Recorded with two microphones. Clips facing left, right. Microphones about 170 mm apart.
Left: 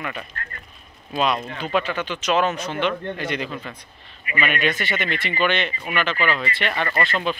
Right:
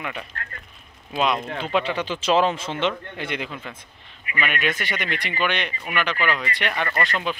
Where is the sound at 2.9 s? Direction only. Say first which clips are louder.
Left 3 dB; 15° right (ahead or behind).